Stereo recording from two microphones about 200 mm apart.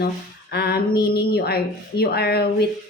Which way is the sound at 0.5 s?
50° left (ahead or behind).